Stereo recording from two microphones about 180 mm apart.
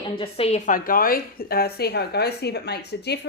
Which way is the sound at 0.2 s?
35° left (ahead or behind).